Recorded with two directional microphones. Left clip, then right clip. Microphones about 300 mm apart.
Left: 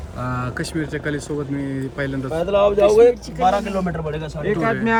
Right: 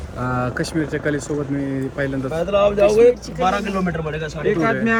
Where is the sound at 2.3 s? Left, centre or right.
Left.